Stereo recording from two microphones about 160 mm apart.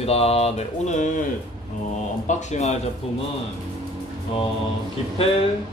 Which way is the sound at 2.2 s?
45° left (ahead or behind).